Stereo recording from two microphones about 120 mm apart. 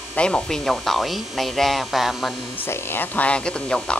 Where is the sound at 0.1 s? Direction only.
10° left (ahead or behind).